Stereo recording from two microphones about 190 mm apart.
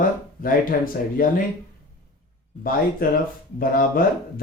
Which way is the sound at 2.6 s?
50° left (ahead or behind).